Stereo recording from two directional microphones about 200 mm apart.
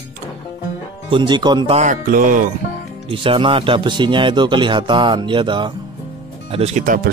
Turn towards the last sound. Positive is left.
turn(degrees=-45)  # may be behind; listen again after turning